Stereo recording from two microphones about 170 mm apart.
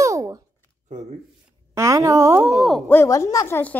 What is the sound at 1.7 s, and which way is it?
Speech, 20° right (ahead or behind).